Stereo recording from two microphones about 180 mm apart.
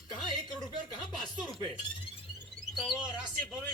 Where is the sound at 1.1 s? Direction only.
Centre (ahead or behind).